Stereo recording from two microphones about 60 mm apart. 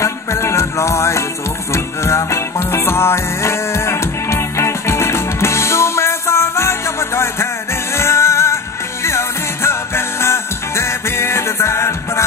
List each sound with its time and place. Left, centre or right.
0.0 s music: left